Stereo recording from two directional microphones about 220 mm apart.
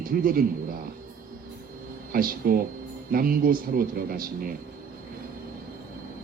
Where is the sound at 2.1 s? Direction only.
40° right (ahead or behind).